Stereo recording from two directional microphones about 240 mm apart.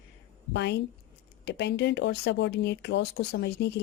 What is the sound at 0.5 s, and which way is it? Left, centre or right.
Speech, left.